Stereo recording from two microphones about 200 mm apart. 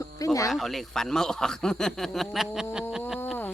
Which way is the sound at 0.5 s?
Centre (ahead or behind).